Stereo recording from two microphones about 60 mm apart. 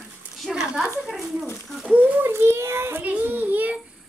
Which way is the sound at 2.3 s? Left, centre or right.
Right.